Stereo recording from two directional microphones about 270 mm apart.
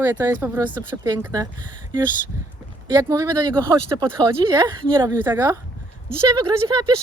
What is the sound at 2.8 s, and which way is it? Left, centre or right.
Speech, centre.